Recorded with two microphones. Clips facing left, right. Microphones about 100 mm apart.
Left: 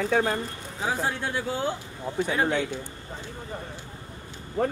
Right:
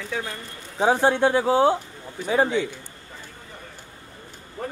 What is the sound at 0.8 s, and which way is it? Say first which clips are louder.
Speech: right 10 dB; 70° right (ahead or behind).